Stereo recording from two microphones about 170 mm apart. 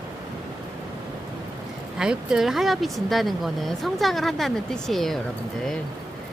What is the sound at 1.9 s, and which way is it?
Speech, 5° right (ahead or behind).